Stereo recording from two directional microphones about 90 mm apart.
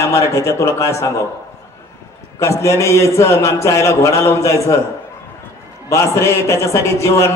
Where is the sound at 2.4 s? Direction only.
35° left (ahead or behind).